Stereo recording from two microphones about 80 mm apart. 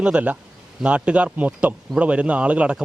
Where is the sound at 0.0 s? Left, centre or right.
Centre.